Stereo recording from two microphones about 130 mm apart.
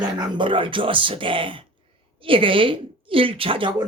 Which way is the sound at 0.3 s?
40° right (ahead or behind).